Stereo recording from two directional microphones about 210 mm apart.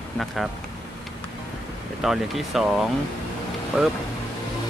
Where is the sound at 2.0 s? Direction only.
Centre (ahead or behind).